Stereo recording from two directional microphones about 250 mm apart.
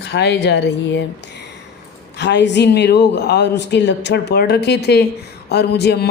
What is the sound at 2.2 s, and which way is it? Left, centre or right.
Speech, left.